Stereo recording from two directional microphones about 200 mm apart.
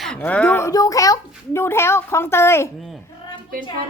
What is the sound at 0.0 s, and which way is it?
A child's voice, 5° left (ahead or behind).